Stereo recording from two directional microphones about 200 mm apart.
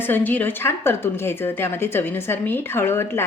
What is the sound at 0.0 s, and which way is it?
A woman's voice, 10° left (ahead or behind).